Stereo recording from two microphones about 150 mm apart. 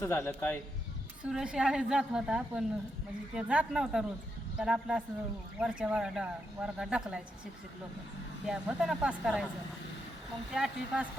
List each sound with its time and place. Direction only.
0.0 s a man's voice: 15° left (ahead or behind)
1.2 s a woman's voice: 5° right (ahead or behind)
8.4 s a woman's voice: 5° right (ahead or behind)
10.5 s a woman's voice: 5° right (ahead or behind)